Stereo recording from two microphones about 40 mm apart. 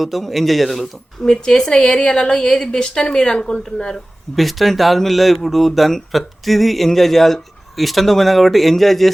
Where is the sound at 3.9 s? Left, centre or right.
Centre.